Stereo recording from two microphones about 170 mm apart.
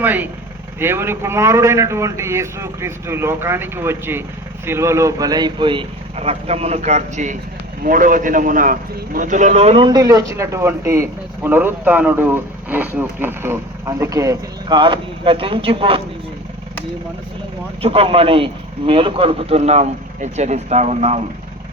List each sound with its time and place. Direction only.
0.0 s a man's voice: 10° right (ahead or behind); by 16.0 s 30° right (ahead or behind)
17.8 s speech: 35° right (ahead or behind)